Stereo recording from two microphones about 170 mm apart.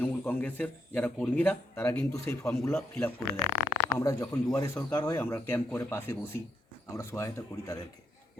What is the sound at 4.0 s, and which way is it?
A man's voice, 20° left (ahead or behind).